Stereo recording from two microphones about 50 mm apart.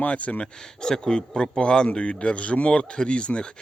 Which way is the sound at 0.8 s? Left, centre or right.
Centre.